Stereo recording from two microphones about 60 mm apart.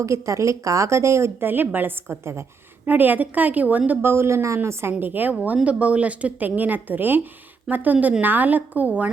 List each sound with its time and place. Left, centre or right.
0.0 s a woman's voice: right
1.4 s a woman's voice: right
4.0 s a woman's voice: right